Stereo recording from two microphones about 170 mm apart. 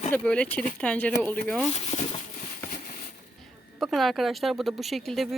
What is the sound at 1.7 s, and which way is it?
Speech, 40° left (ahead or behind).